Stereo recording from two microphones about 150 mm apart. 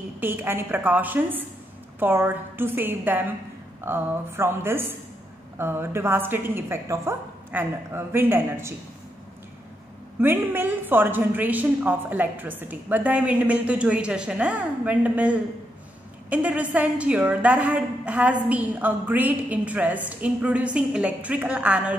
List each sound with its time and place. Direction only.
0.2 s a woman's voice: 15° right (ahead or behind)
10.2 s a woman's voice: 15° right (ahead or behind)